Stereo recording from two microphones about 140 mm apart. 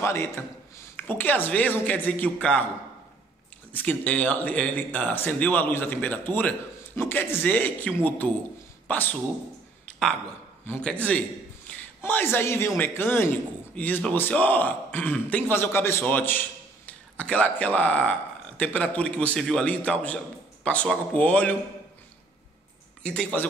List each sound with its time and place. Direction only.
0.0 s speech: 15° left (ahead or behind)
3.7 s speech: 10° left (ahead or behind)
9.8 s a sound: 5° left (ahead or behind)
10.7 s a man's voice: 10° left (ahead or behind)
23.0 s speech: 5° left (ahead or behind)